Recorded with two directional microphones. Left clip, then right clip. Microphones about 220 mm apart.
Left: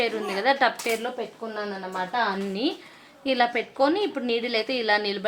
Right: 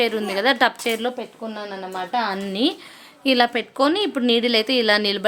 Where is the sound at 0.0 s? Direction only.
45° right (ahead or behind).